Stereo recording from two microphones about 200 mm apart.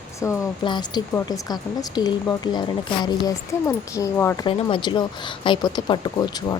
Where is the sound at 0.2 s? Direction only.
20° left (ahead or behind).